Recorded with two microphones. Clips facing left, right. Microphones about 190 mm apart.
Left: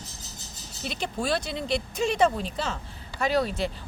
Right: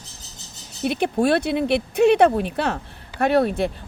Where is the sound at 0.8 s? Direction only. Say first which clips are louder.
Right 10 dB; 60° right (ahead or behind).